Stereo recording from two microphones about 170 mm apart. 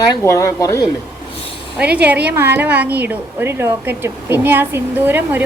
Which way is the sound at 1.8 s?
10° right (ahead or behind).